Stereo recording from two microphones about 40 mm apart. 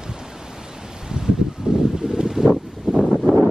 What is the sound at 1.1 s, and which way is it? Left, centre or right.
Wind, centre.